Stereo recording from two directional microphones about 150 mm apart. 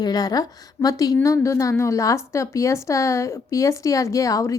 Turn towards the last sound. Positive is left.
turn(degrees=20)  # may be behind; listen again after turning